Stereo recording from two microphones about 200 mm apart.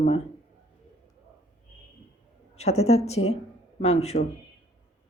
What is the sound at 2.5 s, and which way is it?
Speech, 30° left (ahead or behind).